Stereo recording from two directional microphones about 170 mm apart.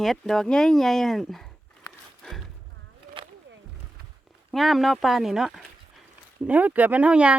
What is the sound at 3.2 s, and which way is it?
Roaring cats, 30° right (ahead or behind).